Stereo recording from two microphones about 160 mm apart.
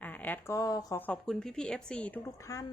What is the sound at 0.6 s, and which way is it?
Speech, 20° left (ahead or behind).